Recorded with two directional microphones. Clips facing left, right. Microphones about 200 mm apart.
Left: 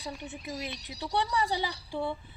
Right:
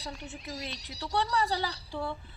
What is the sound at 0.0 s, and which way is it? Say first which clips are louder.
Speech: left 2 dB; 15° left (ahead or behind).